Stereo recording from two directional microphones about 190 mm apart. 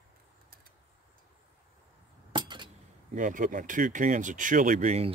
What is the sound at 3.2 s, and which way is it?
Speech, 45° right (ahead or behind).